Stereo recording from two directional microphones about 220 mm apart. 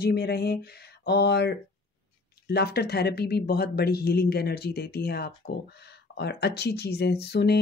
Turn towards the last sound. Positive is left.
turn(degrees=45)  # may be behind; listen again after turning